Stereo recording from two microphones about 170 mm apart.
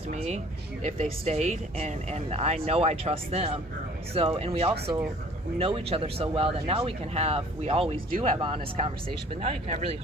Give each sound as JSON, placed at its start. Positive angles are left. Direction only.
{"t": 0.1, "sound": "speech", "side_deg": -40}